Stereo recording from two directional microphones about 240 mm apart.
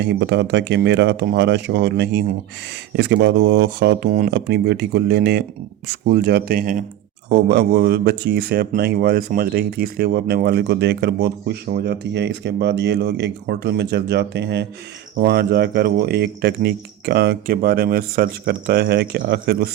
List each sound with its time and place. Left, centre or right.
0.0 s speech: right